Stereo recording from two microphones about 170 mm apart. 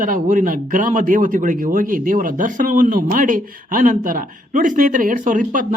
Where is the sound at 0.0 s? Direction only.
50° right (ahead or behind).